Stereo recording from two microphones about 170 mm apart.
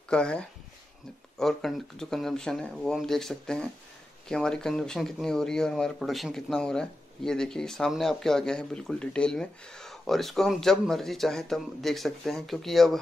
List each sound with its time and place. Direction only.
0.1 s speech: 5° left (ahead or behind)